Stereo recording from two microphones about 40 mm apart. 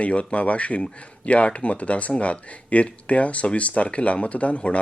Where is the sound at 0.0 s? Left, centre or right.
Left.